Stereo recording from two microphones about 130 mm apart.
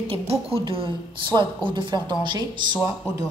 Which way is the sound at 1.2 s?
40° right (ahead or behind).